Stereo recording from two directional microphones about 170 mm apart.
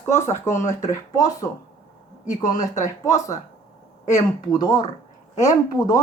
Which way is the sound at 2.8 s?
20° left (ahead or behind).